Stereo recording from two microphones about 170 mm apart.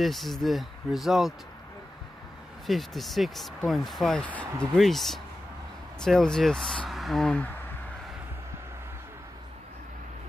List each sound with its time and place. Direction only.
0.0 s speech: centre (ahead or behind)
2.6 s speech: centre (ahead or behind)